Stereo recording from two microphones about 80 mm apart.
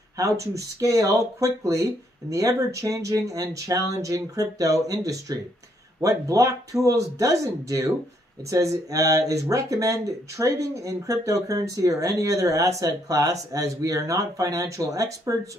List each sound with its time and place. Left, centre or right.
0.2 s speech: right